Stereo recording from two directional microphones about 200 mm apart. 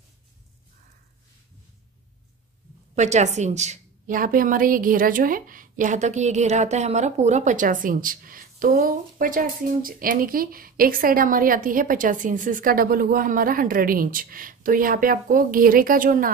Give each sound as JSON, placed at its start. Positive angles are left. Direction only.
{"t": 3.0, "sound": "a woman's voice", "side_deg": -35}